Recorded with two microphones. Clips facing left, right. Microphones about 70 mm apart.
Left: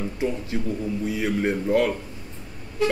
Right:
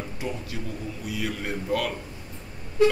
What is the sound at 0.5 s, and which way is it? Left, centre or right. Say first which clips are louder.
Speech: left 8 dB; left.